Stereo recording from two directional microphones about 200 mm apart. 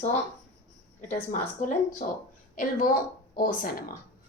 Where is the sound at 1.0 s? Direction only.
35° left (ahead or behind).